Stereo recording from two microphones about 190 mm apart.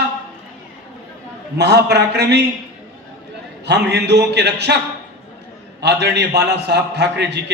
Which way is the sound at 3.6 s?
60° right (ahead or behind).